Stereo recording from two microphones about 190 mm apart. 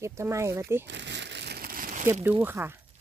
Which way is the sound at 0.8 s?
65° right (ahead or behind).